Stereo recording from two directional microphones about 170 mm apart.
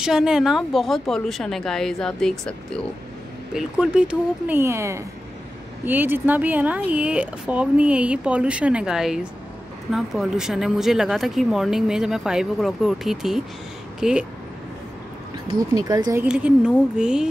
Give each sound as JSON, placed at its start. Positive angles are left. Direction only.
{"t": 0.0, "sound": "speech", "side_deg": -5}
{"t": 15.7, "sound": "speech", "side_deg": -20}
{"t": 16.3, "sound": "speech", "side_deg": -5}